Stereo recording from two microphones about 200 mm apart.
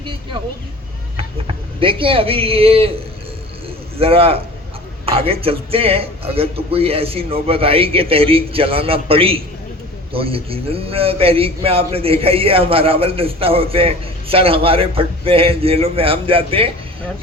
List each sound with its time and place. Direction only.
1.8 s speech: 25° right (ahead or behind)
4.0 s speech: 30° right (ahead or behind)